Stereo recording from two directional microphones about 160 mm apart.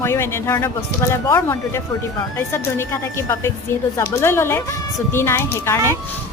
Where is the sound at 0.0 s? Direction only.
15° left (ahead or behind).